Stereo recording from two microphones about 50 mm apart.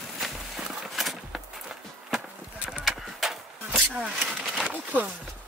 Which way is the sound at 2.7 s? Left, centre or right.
Centre.